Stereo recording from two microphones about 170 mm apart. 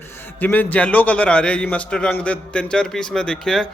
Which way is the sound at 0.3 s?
10° left (ahead or behind).